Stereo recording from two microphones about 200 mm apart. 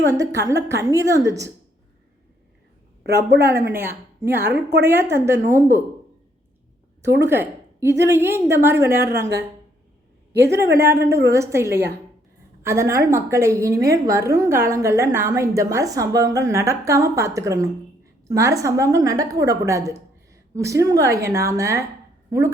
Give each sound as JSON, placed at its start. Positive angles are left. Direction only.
{"t": 0.1, "sound": "a woman's voice", "side_deg": -15}
{"t": 3.7, "sound": "a woman's voice", "side_deg": -10}
{"t": 7.1, "sound": "a woman's voice", "side_deg": -10}
{"t": 10.3, "sound": "a woman's voice", "side_deg": -55}
{"t": 10.8, "sound": "a woman's voice", "side_deg": -15}